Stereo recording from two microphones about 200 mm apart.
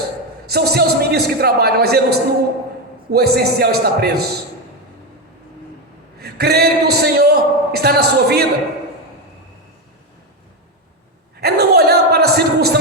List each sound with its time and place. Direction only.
0.4 s a man's voice: 50° right (ahead or behind)
6.1 s a man's voice: 50° right (ahead or behind)
11.3 s a man's voice: 55° right (ahead or behind)